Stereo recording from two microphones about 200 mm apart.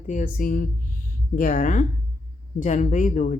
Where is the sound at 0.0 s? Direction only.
40° left (ahead or behind).